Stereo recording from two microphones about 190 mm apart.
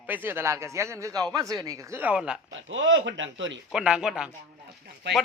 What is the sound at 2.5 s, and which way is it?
Speech, 75° right (ahead or behind).